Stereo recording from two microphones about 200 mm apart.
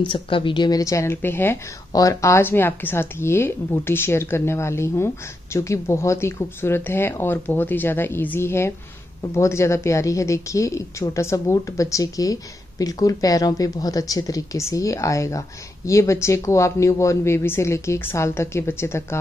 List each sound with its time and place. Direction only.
0.0 s a woman's voice: 25° left (ahead or behind)